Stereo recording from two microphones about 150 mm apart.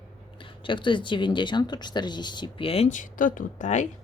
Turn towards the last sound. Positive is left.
turn(degrees=55)  # may be behind; listen again after turning